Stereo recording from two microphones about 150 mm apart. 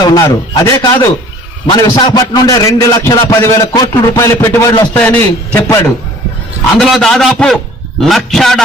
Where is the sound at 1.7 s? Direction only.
30° left (ahead or behind); by 5.8 s 10° left (ahead or behind).